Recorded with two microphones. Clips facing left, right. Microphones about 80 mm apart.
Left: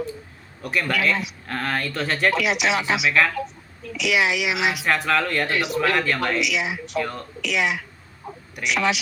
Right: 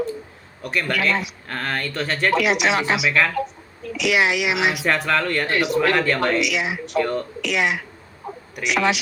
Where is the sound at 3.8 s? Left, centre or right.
Right.